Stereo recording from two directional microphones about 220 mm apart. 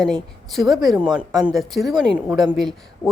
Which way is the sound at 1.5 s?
Centre (ahead or behind).